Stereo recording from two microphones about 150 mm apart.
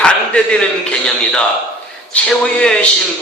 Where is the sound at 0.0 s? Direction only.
5° left (ahead or behind).